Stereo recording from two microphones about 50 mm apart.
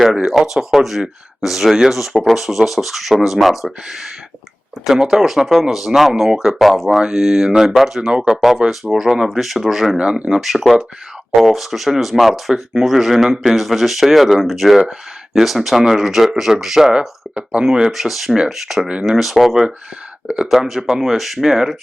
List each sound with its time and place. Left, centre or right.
0.3 s speech: centre
4.9 s speech: centre
8.1 s speech: centre
8.4 s speech: centre
10.0 s speech: centre
17.3 s speech: centre
17.9 s speech: centre
20.2 s speech: centre